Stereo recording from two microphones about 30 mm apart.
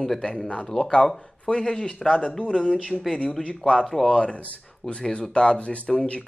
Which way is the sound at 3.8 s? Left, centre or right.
Centre.